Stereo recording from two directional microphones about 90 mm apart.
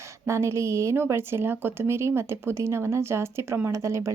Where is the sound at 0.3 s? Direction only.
30° right (ahead or behind).